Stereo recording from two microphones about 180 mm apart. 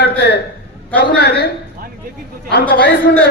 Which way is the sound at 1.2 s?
65° left (ahead or behind).